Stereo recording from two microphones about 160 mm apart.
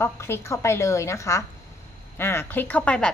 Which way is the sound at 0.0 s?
15° left (ahead or behind).